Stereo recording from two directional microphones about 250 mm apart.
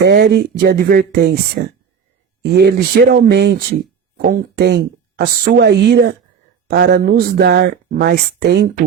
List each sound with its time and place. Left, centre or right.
0.0 s speech: right